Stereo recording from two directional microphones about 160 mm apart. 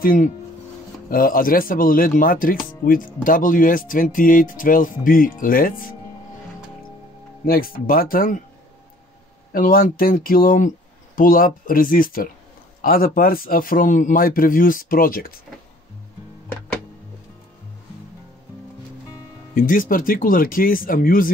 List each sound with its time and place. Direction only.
0.0 s speech: 60° left (ahead or behind)
7.4 s speech: 70° left (ahead or behind)
9.5 s speech: 65° left (ahead or behind)
19.5 s speech: 60° left (ahead or behind)